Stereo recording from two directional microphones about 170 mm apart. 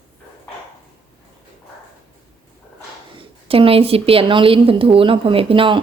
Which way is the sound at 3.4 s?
35° right (ahead or behind).